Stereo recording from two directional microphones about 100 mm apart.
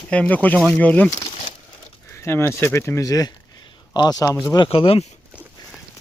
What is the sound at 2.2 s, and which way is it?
Speech, 25° left (ahead or behind).